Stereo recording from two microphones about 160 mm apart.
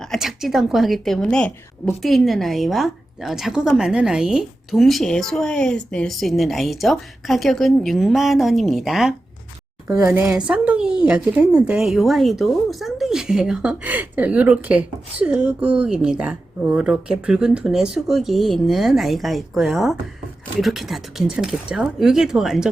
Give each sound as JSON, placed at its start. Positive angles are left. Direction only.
{"t": 0.0, "sound": "speech", "side_deg": 0}
{"t": 9.8, "sound": "speech", "side_deg": -20}
{"t": 10.1, "sound": "speech", "side_deg": -5}